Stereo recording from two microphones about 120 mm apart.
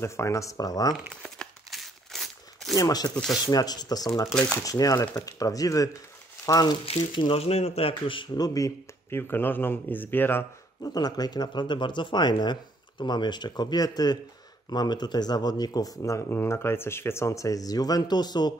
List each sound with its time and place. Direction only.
0.0 s speech: 25° left (ahead or behind)
1.2 s tearing: 5° left (ahead or behind)
2.7 s speech: 30° left (ahead or behind)
4.3 s speech: 5° left (ahead or behind)
4.6 s speech: 30° left (ahead or behind)
7.2 s speech: 50° left (ahead or behind)
8.5 s speech: 25° left (ahead or behind)
10.8 s speech: 30° left (ahead or behind)